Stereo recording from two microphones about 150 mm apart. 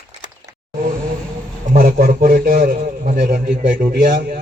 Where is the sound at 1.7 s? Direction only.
70° right (ahead or behind).